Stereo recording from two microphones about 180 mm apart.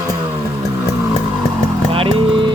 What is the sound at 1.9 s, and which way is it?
Vehicle, 30° right (ahead or behind).